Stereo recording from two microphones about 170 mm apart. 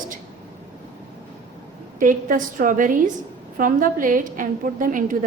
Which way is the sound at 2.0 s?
50° right (ahead or behind).